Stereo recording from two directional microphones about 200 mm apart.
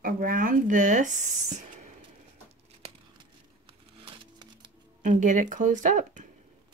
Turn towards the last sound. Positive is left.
turn(degrees=-40)  # may be behind; listen again after turning